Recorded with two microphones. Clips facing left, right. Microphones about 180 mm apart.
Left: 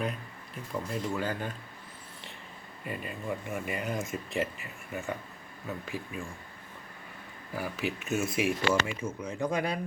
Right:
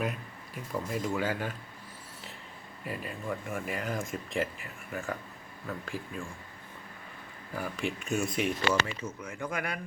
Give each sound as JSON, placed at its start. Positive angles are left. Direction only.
{"t": 0.7, "sound": "speech", "side_deg": -5}
{"t": 2.8, "sound": "speech", "side_deg": 0}
{"t": 7.5, "sound": "speech", "side_deg": 5}
{"t": 9.4, "sound": "speech", "side_deg": 30}